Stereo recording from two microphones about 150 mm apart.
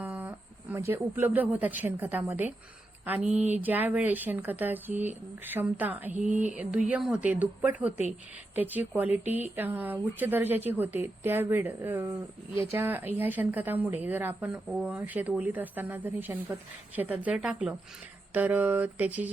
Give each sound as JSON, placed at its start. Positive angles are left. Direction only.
{"t": 0.0, "sound": "a woman's voice", "side_deg": -10}